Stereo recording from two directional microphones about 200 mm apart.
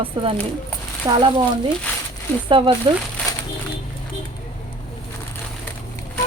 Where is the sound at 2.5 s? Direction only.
25° right (ahead or behind).